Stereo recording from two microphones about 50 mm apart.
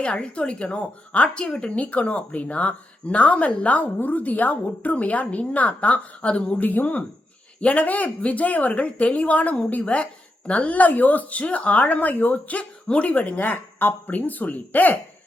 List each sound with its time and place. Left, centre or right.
0.0 s speech: left
1.8 s speech: left
6.6 s speech: left